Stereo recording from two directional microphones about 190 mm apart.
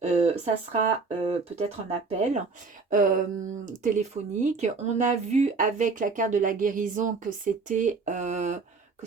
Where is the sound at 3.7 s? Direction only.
40° right (ahead or behind).